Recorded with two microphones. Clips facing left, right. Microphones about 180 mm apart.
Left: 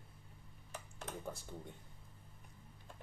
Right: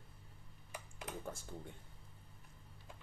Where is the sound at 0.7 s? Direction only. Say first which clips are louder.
Even; 10° right (ahead or behind).